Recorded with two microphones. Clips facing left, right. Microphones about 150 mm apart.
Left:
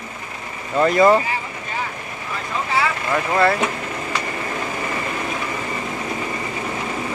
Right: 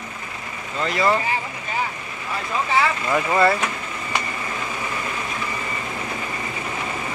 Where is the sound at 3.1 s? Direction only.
Centre (ahead or behind).